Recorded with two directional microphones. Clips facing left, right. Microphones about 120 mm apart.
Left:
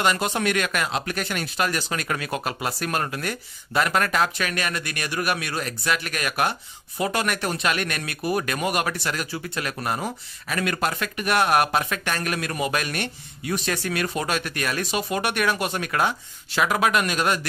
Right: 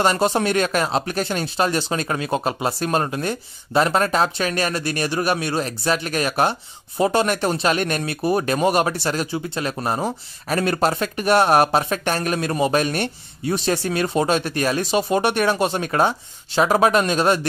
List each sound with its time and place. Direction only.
0.0 s speech: 35° right (ahead or behind)